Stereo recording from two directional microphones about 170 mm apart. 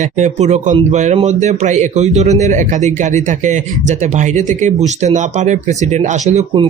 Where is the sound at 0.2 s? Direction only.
40° right (ahead or behind).